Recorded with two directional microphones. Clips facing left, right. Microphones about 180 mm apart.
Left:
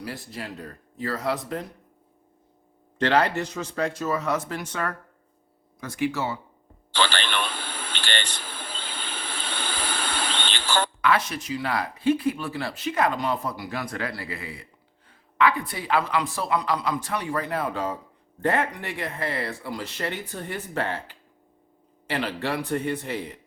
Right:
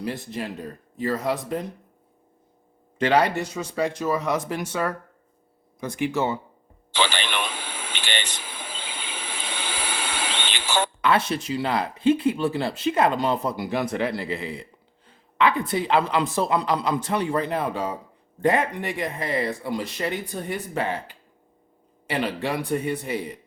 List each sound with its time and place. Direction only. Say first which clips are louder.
0.0 s speech: right 5 dB; 20° right (ahead or behind)
3.0 s speech: right 2 dB; 10° right (ahead or behind)
6.9 s a sound: even; 10° right (ahead or behind)
11.0 s speech: right 2 dB; 30° right (ahead or behind)